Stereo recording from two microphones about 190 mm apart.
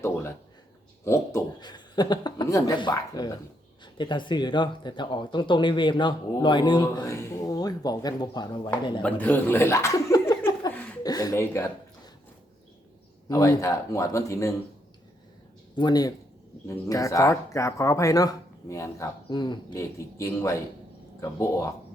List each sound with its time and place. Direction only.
1.0 s speech: 15° left (ahead or behind)
9.0 s chuckle: 10° left (ahead or behind)
13.2 s speech: 20° left (ahead or behind)
15.7 s speech: 20° left (ahead or behind)